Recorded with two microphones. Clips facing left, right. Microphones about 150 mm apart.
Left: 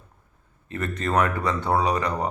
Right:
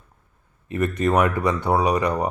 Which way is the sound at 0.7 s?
15° right (ahead or behind).